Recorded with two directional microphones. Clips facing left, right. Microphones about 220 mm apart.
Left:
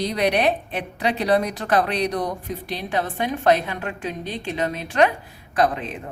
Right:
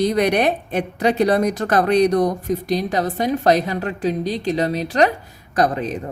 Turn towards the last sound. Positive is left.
turn(degrees=-40)  # may be behind; listen again after turning